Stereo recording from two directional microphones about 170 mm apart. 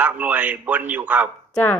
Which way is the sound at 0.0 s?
10° right (ahead or behind).